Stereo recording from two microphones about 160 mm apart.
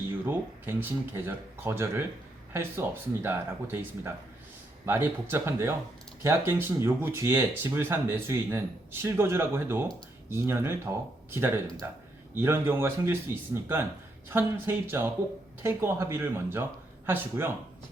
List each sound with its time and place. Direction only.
0.3 s speech: 15° right (ahead or behind)